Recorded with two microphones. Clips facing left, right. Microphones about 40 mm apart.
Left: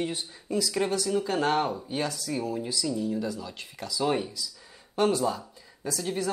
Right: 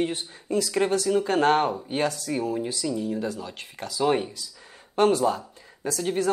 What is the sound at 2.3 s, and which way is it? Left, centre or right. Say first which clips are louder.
Speech: right 4 dB; right.